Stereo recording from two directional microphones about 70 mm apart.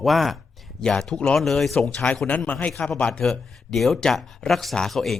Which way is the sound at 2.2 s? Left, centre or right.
Left.